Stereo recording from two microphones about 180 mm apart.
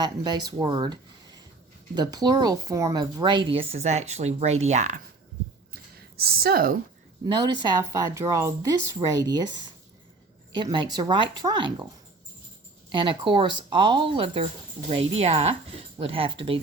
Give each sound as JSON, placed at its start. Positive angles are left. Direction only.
{"t": 0.0, "sound": "speech", "side_deg": -25}
{"t": 2.0, "sound": "speech", "side_deg": -20}
{"t": 6.3, "sound": "a woman's voice", "side_deg": -55}
{"t": 7.3, "sound": "a woman's voice", "side_deg": -25}
{"t": 10.5, "sound": "speech", "side_deg": -25}
{"t": 12.9, "sound": "speech", "side_deg": -25}